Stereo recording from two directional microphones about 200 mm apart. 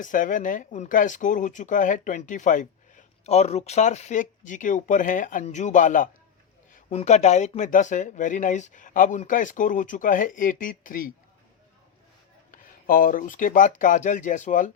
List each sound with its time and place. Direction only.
0.0 s speech: 40° left (ahead or behind)
12.5 s speech: 45° left (ahead or behind)